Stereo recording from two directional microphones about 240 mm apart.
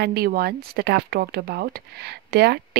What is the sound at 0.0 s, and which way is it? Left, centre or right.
Speech, right.